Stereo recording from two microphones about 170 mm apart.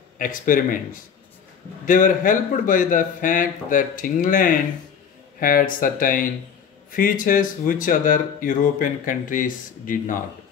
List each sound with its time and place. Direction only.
0.2 s speech: 55° left (ahead or behind)
1.9 s speech: 50° left (ahead or behind)